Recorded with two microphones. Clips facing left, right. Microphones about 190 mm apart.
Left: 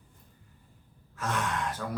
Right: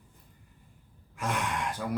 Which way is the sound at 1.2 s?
15° right (ahead or behind).